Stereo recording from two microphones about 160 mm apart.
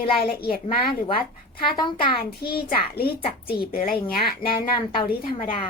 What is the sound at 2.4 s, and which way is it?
Speech, 70° left (ahead or behind).